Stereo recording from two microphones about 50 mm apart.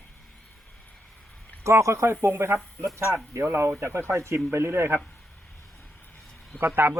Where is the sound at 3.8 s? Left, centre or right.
Right.